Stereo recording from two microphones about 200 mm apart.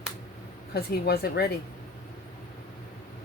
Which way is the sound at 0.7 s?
50° left (ahead or behind).